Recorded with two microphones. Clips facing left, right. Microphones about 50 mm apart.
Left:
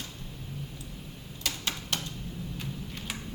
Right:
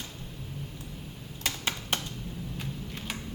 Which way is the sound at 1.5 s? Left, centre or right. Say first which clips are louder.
Right 2 dB; right.